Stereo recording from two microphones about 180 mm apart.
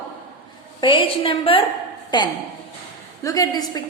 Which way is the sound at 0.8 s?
30° left (ahead or behind).